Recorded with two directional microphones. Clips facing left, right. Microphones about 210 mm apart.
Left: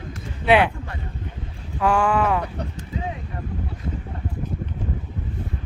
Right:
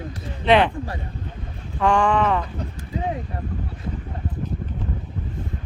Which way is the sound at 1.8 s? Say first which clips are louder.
Right 1 dB; 5° left (ahead or behind).